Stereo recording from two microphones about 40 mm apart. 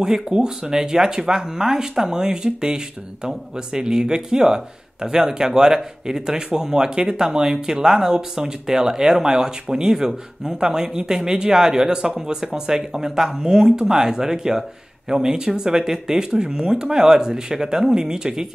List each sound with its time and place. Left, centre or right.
0.3 s speech: centre